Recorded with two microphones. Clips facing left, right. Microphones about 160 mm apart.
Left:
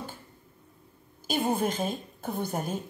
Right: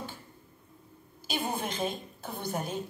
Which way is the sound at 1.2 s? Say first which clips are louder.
Left 6 dB; 45° left (ahead or behind).